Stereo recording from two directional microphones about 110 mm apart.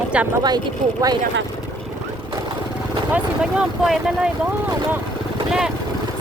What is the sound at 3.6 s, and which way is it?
Speech, 5° right (ahead or behind).